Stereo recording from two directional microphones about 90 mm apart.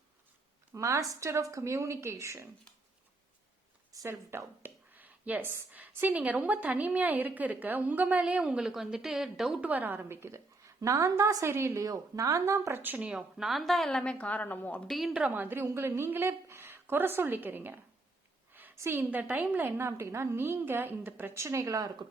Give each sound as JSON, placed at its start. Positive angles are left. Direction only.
{"t": 0.7, "sound": "a woman's voice", "side_deg": -35}
{"t": 3.9, "sound": "speech", "side_deg": -30}
{"t": 9.6, "sound": "a woman's voice", "side_deg": -15}
{"t": 12.8, "sound": "speech", "side_deg": -15}
{"t": 13.3, "sound": "a woman's voice", "side_deg": 0}
{"t": 14.8, "sound": "a woman's voice", "side_deg": 0}
{"t": 15.3, "sound": "a woman's voice", "side_deg": -25}
{"t": 18.8, "sound": "a woman's voice", "side_deg": -25}